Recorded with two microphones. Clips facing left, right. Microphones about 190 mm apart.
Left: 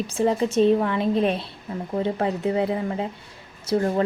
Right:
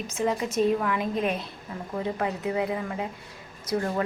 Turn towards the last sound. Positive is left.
turn(degrees=30)  # may be behind; listen again after turning